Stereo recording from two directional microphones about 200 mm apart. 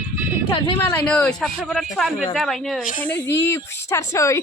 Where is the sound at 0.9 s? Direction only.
5° left (ahead or behind).